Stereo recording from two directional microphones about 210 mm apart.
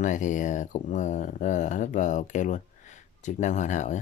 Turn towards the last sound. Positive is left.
turn(degrees=35)  # may be behind; listen again after turning